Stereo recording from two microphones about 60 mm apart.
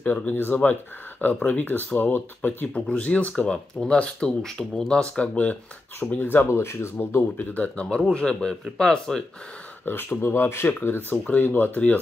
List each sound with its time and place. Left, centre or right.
0.0 s speech: left; by 5.0 s centre
5.2 s speech: left
5.9 s speech: left
6.4 s speech: left
7.5 s speech: left
9.8 s speech: left